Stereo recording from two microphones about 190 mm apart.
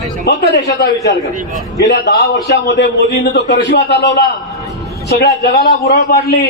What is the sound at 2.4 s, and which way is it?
A man's voice, 65° left (ahead or behind).